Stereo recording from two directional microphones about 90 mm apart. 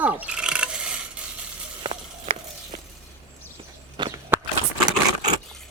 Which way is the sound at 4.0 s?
55° right (ahead or behind).